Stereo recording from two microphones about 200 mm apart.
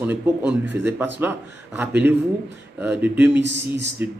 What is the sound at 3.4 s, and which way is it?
Speech, 60° right (ahead or behind).